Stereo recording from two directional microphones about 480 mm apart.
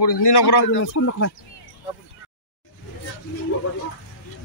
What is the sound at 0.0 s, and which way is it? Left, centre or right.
Speech, left.